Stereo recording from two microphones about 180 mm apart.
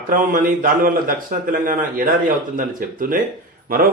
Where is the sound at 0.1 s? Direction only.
50° right (ahead or behind).